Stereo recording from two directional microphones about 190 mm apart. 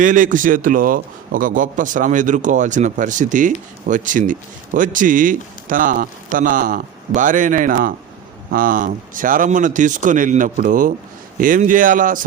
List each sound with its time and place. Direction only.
0.0 s a man's voice: 45° right (ahead or behind)